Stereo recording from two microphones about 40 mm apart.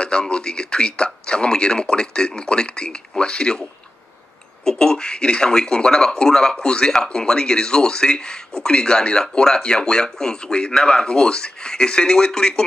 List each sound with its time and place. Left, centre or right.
0.0 s speech: left
4.6 s speech: centre